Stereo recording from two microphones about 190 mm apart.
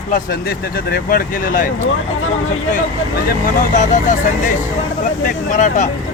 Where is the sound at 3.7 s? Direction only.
40° left (ahead or behind).